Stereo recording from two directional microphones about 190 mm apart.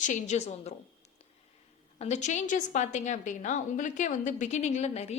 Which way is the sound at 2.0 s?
40° left (ahead or behind).